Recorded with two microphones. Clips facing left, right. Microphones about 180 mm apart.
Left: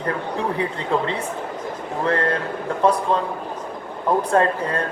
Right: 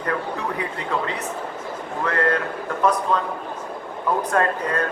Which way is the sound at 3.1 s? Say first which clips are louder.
Left 1 dB; 35° left (ahead or behind).